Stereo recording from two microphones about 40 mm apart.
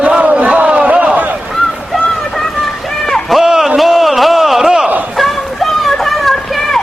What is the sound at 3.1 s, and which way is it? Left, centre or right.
Run, centre.